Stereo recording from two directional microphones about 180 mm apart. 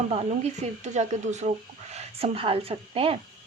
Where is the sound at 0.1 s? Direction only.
35° right (ahead or behind).